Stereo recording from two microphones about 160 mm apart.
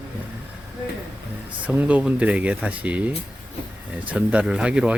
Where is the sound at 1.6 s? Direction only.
10° right (ahead or behind).